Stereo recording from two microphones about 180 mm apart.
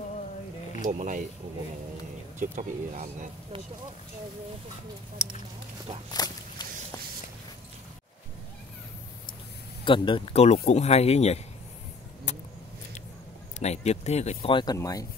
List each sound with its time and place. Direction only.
0.8 s speech: 45° right (ahead or behind)
2.3 s speech: 45° right (ahead or behind)
6.1 s walk: 20° left (ahead or behind)
9.8 s speech: 30° left (ahead or behind)
12.3 s vehicle: 40° left (ahead or behind)
13.6 s speech: 40° left (ahead or behind); by 15.0 s 20° left (ahead or behind)